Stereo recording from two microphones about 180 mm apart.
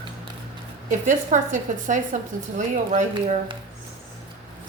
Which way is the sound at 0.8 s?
45° right (ahead or behind).